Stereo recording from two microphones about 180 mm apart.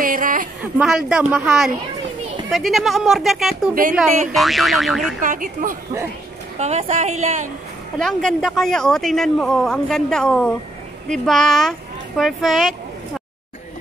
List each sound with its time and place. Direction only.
0.0 s a sound: 50° right (ahead or behind)
0.7 s a woman's voice: 5° right (ahead or behind)
5.2 s a woman's voice: 45° right (ahead or behind)
6.6 s a woman's voice: 40° right (ahead or behind)
8.0 s a woman's voice: 5° left (ahead or behind)